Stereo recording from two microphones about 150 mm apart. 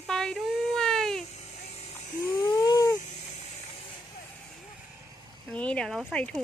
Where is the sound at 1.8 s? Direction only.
50° left (ahead or behind).